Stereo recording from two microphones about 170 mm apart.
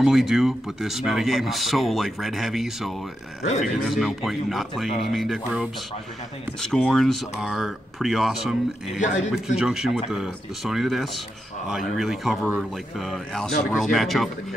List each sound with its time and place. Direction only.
0.0 s speech: centre (ahead or behind)
6.6 s speech: 5° left (ahead or behind)
9.0 s speech: 45° left (ahead or behind)
9.6 s speech: 5° right (ahead or behind)